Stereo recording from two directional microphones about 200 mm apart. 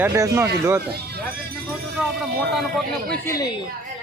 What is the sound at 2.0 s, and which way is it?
Speech, centre (ahead or behind).